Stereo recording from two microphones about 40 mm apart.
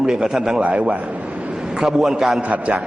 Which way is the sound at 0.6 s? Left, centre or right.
Right.